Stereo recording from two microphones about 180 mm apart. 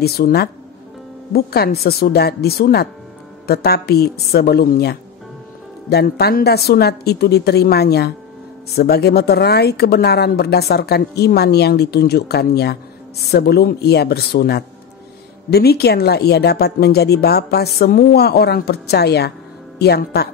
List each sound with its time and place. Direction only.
0.0 s speech: 60° left (ahead or behind)